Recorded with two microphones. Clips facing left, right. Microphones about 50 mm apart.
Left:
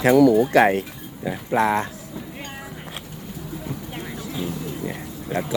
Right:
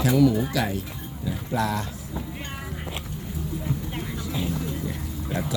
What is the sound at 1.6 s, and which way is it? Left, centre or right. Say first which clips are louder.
Speech: left 7 dB; left.